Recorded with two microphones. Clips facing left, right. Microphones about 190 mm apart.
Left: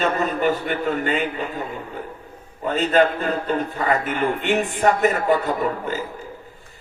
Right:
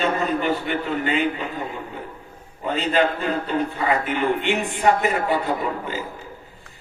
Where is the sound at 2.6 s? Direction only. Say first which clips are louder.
Left 3 dB; 45° left (ahead or behind).